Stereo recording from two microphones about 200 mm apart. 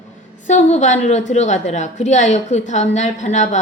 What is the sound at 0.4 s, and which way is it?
A woman's voice, 35° left (ahead or behind).